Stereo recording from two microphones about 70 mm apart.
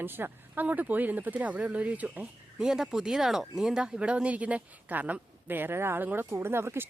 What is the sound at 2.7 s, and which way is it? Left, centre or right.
Speech, centre.